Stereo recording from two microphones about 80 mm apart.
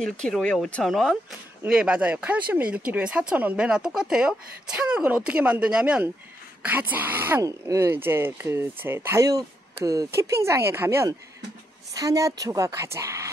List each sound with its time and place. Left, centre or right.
0.0 s speech: centre
0.8 s speech: centre
1.7 s speech: centre
7.4 s speech: right
7.9 s speech: right
9.8 s speech: right
11.9 s a woman's voice: right